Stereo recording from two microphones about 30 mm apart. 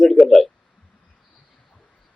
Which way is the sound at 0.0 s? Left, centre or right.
Centre.